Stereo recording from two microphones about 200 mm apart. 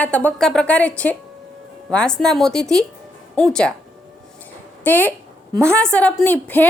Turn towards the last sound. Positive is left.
turn(degrees=10)  # may be behind; listen again after turning